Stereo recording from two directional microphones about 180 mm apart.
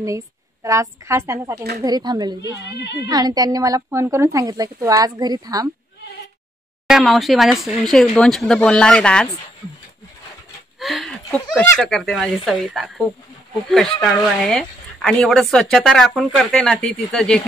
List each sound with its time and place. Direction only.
0.7 s a woman's voice: 15° right (ahead or behind)
6.9 s a woman's voice: centre (ahead or behind)
10.8 s a woman's voice: centre (ahead or behind)